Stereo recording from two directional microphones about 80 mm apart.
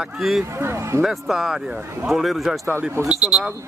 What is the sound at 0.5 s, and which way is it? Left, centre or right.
Speech, right.